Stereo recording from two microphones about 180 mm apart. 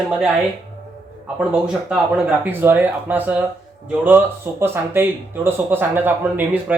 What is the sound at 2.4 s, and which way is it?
Speech, 10° right (ahead or behind).